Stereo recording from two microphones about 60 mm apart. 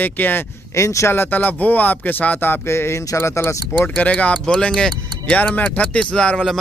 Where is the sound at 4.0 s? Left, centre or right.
Left.